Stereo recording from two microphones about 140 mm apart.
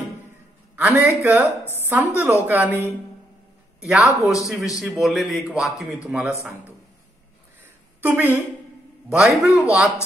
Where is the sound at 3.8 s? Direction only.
5° right (ahead or behind).